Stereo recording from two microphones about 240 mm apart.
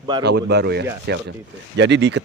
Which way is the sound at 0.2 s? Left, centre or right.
Right.